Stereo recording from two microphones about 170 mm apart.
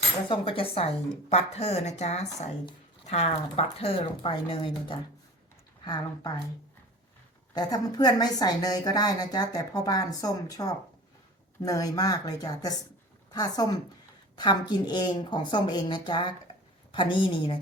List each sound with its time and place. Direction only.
0.3 s a woman's voice: 30° left (ahead or behind)
7.5 s a woman's voice: 25° left (ahead or behind)